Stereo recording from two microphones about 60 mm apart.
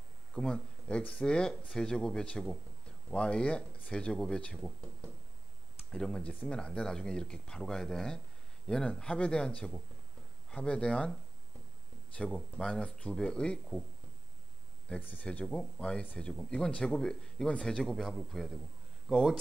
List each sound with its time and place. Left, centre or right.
0.3 s speech: centre
12.2 s speech: centre
15.0 s speech: left
15.2 s speech: centre